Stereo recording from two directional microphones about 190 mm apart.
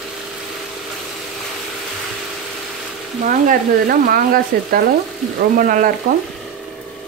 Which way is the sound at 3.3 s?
45° right (ahead or behind).